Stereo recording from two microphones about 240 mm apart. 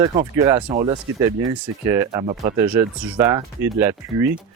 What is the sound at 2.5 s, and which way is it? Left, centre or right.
Speech, centre.